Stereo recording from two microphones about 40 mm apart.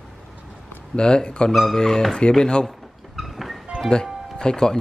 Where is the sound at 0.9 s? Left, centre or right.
Left.